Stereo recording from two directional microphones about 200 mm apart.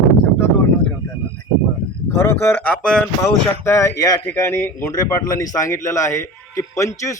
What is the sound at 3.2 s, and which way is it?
Speech, 15° left (ahead or behind).